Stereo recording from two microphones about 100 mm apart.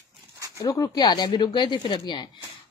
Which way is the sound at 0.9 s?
45° left (ahead or behind).